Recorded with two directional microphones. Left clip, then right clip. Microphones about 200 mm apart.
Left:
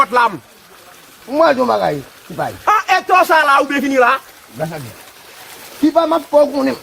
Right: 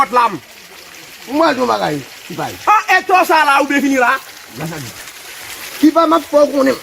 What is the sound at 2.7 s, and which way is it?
Speech, 25° left (ahead or behind).